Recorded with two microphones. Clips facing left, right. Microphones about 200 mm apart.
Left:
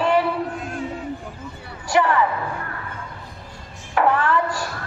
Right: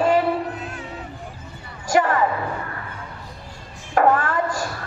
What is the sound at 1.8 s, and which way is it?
Music, 45° right (ahead or behind).